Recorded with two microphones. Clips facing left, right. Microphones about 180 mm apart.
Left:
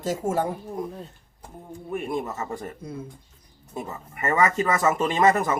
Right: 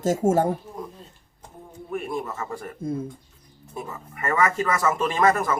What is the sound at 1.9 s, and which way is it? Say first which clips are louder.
Speech: left 1 dB; 20° left (ahead or behind).